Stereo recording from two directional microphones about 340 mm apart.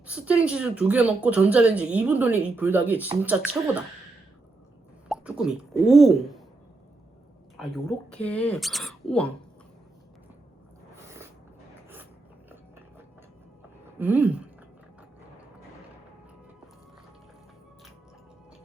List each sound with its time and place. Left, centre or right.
0.0 s speech: centre
5.0 s speech: centre
7.5 s speech: centre
14.0 s speech: centre